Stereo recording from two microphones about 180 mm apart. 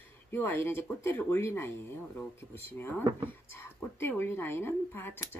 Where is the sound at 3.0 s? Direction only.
25° right (ahead or behind).